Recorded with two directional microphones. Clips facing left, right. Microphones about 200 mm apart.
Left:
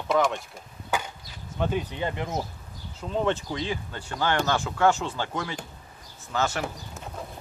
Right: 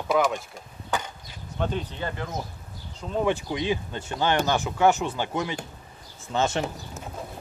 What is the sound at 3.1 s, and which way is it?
Speech, 10° right (ahead or behind).